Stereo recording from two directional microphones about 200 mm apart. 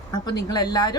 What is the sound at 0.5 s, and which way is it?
Speech, 20° left (ahead or behind).